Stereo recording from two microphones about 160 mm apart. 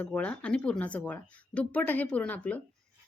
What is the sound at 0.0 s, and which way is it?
Speech, 10° left (ahead or behind).